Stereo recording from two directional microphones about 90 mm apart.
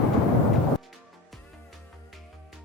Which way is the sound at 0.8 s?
Centre (ahead or behind).